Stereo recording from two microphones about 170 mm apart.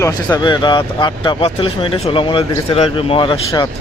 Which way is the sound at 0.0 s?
25° left (ahead or behind).